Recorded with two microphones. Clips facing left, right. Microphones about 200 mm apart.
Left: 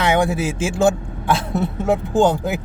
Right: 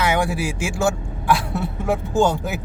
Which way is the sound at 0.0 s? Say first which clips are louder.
Left 3 dB; 20° left (ahead or behind).